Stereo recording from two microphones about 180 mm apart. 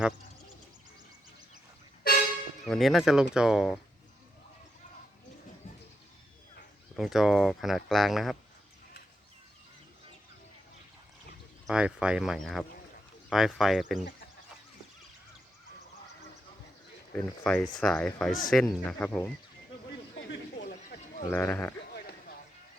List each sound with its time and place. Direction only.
2.6 s speech: centre (ahead or behind)
6.9 s speech: centre (ahead or behind)
11.6 s speech: 5° right (ahead or behind)
17.2 s speech: 5° left (ahead or behind)
20.1 s a sound: 75° left (ahead or behind)
21.2 s speech: 10° left (ahead or behind)